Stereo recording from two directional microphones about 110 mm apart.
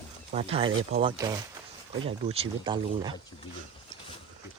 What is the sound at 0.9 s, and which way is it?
Speech, 75° right (ahead or behind).